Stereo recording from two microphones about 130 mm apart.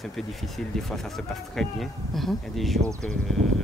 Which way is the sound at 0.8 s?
5° left (ahead or behind).